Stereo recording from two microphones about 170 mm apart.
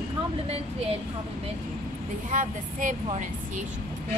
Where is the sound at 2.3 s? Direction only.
50° right (ahead or behind).